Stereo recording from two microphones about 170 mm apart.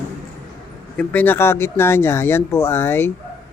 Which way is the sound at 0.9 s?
10° left (ahead or behind).